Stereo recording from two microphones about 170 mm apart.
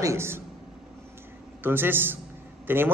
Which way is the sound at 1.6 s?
10° right (ahead or behind).